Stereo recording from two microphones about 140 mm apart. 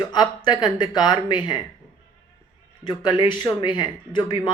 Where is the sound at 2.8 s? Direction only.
35° left (ahead or behind).